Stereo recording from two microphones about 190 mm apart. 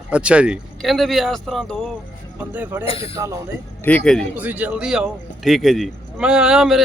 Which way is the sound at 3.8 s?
5° left (ahead or behind).